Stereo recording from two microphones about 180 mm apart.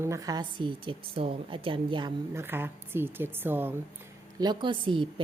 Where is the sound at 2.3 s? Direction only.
10° right (ahead or behind).